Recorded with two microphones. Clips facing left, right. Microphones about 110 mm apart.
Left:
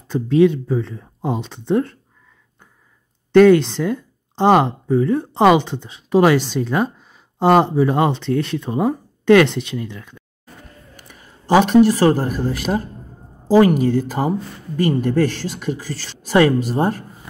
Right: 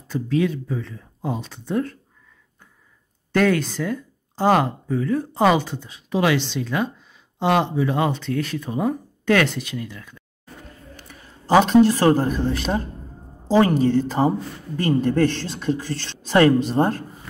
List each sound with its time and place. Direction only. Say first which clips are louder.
0.1 s speech: left 7 dB; 30° left (ahead or behind)
3.3 s speech: left 9 dB; 25° left (ahead or behind)
11.5 s speech: left 2 dB; 10° left (ahead or behind)
13.5 s speech: left 4 dB; 30° right (ahead or behind)
15.0 s speech: left 1 dB; 10° left (ahead or behind)